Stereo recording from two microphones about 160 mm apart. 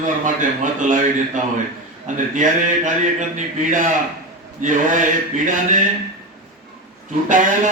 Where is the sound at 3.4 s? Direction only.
50° right (ahead or behind).